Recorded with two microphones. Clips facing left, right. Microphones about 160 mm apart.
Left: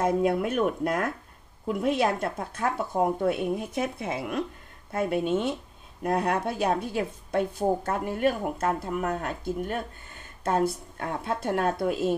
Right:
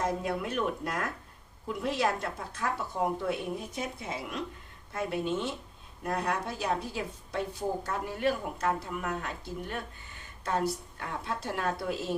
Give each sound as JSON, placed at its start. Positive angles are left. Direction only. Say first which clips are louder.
{"t": 0.0, "sound": "a woman's voice", "louder": "left 7 dB", "side_deg": 55}